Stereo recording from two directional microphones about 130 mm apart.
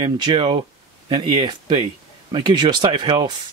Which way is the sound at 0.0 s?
40° right (ahead or behind).